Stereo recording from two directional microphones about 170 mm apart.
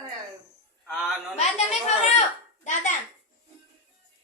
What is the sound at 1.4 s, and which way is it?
Speech, 40° left (ahead or behind).